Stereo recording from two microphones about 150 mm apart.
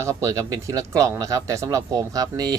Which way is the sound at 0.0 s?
20° right (ahead or behind).